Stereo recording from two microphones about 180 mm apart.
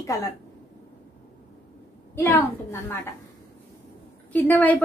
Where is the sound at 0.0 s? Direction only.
20° left (ahead or behind).